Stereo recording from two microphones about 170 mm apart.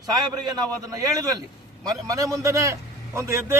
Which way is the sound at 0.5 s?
20° right (ahead or behind).